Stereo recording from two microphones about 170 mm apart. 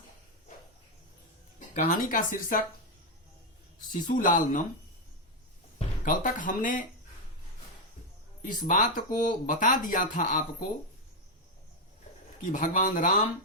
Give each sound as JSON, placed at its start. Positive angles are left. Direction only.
{"t": 1.5, "sound": "speech", "side_deg": 50}
{"t": 4.0, "sound": "speech", "side_deg": 50}
{"t": 6.1, "sound": "speech", "side_deg": 50}
{"t": 8.4, "sound": "speech", "side_deg": 50}
{"t": 12.4, "sound": "speech", "side_deg": 50}